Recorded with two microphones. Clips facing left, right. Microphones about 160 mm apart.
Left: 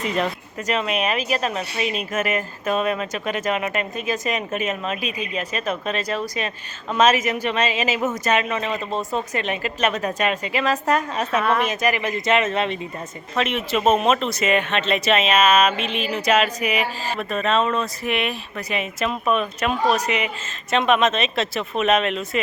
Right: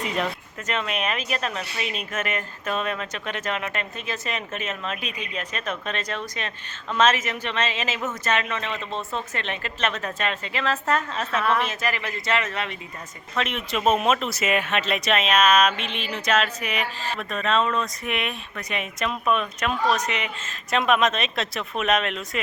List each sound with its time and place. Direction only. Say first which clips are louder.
0.0 s a woman's voice: left 3 dB; centre (ahead or behind)
1.5 s speech: left 5 dB; 40° left (ahead or behind)
2.0 s a woman's voice: left 4 dB; 5° left (ahead or behind)
8.9 s speech: left 5 dB; 45° left (ahead or behind)
9.3 s a woman's voice: left 6 dB; 10° left (ahead or behind)
13.3 s speech: left 4 dB; 5° left (ahead or behind)